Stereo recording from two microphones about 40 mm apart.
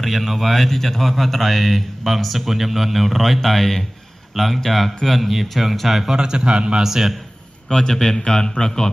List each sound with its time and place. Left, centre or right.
0.0 s speech: centre
6.1 s a man's voice: centre
6.8 s a man's voice: centre
7.7 s a man's voice: centre